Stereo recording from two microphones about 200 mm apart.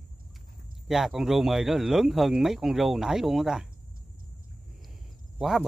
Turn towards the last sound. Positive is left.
turn(degrees=0)  # may be behind; listen again after turning